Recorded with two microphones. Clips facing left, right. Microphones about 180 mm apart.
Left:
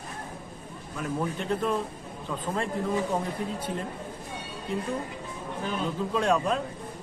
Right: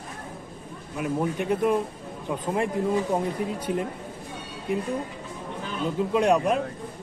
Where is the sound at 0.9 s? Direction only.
15° right (ahead or behind).